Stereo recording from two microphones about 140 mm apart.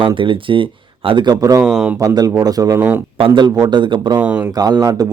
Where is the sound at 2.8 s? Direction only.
15° right (ahead or behind).